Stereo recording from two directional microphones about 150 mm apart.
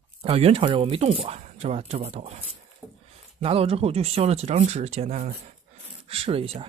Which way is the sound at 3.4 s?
40° right (ahead or behind).